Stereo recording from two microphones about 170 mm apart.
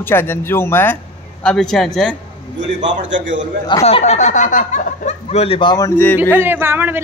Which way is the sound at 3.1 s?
90° right.